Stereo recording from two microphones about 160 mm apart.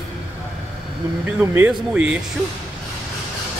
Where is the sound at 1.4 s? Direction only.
15° right (ahead or behind).